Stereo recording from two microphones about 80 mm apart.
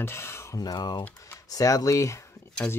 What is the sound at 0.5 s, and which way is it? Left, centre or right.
Speech, left.